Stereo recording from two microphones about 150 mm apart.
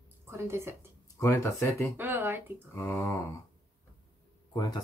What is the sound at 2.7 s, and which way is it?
Speech, 15° left (ahead or behind).